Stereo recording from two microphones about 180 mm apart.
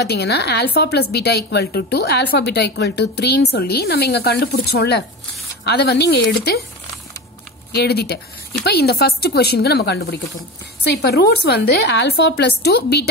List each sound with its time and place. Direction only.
0.0 s a woman's voice: 65° left (ahead or behind)
7.7 s a woman's voice: 65° left (ahead or behind)
10.9 s a woman's voice: 65° left (ahead or behind)